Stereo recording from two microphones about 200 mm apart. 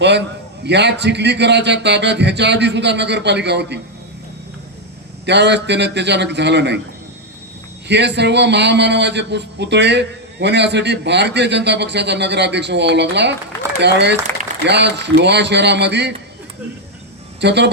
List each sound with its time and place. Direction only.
0.0 s a man's voice: 60° right (ahead or behind)
5.2 s a man's voice: 60° right (ahead or behind)
7.9 s a man's voice: 60° right (ahead or behind)
17.4 s a man's voice: 60° right (ahead or behind)